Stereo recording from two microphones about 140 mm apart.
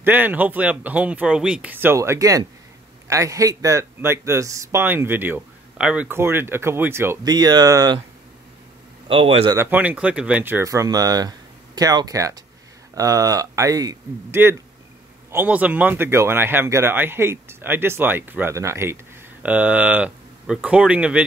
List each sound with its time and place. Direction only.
0.0 s speech: 15° right (ahead or behind)
7.2 s speech: 30° right (ahead or behind)
9.0 s a man's voice: 40° right (ahead or behind)
9.6 s speech: 10° right (ahead or behind)